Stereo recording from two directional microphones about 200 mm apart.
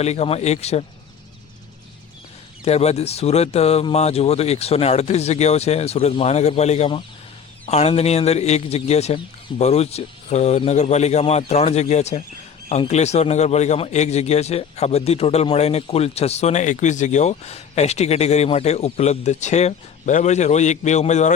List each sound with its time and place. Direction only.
0.0 s a man's voice: 35° left (ahead or behind)
2.6 s a man's voice: 30° left (ahead or behind)